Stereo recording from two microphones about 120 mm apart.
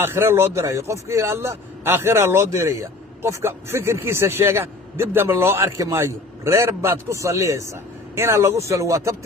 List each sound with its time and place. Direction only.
0.0 s speech: 20° right (ahead or behind)